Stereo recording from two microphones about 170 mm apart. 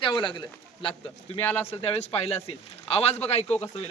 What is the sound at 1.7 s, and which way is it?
Speech, 35° left (ahead or behind).